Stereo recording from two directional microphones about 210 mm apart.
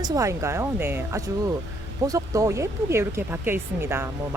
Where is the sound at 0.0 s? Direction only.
15° right (ahead or behind).